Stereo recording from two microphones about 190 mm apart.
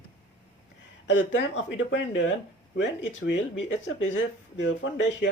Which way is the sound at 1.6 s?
80° left.